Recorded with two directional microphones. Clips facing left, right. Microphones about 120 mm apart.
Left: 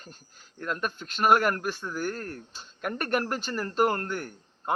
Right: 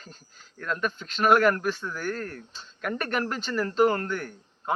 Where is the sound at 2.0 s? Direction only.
35° left (ahead or behind).